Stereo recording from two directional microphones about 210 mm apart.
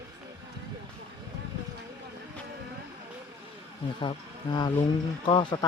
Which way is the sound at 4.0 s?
20° left (ahead or behind).